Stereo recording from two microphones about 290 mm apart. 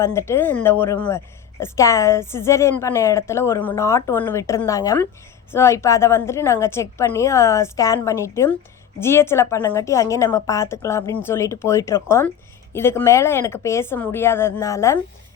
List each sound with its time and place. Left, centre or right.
0.0 s a woman's voice: centre